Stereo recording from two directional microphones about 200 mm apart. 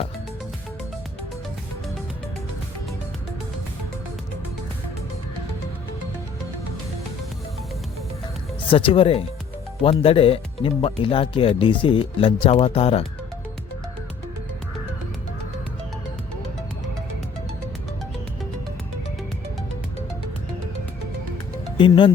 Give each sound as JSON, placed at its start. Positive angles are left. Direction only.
{"t": 8.7, "sound": "speech", "side_deg": 25}
{"t": 21.8, "sound": "speech", "side_deg": 25}